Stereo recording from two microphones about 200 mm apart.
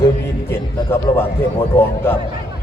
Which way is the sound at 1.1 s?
25° left (ahead or behind).